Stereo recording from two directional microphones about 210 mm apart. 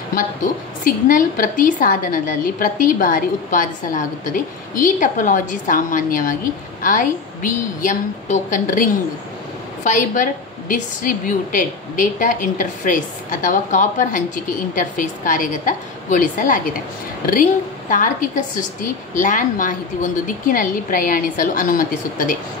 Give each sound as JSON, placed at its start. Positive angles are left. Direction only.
{"t": 0.1, "sound": "a woman's voice", "side_deg": 40}
{"t": 9.8, "sound": "a woman's voice", "side_deg": 35}